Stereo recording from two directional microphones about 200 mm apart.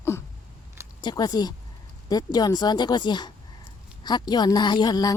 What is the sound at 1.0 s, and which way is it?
A woman's voice, 20° left (ahead or behind).